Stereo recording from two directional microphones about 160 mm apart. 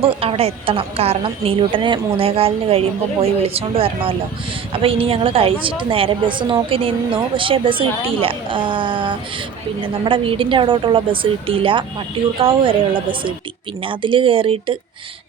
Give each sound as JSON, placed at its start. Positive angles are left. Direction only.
{"t": 0.0, "sound": "a woman's voice", "side_deg": -35}